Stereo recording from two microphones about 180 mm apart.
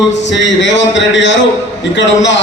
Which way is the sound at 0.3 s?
85° left.